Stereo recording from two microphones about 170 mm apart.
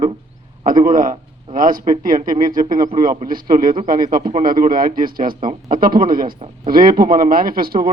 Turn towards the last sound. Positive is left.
turn(degrees=-60)  # may be behind; listen again after turning